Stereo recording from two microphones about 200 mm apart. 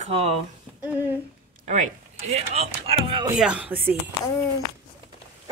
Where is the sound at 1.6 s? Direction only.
35° right (ahead or behind).